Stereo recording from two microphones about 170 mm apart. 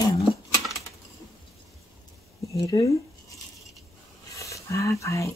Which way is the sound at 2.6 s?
25° left (ahead or behind).